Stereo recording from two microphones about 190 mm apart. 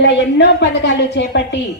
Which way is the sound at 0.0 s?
65° left (ahead or behind).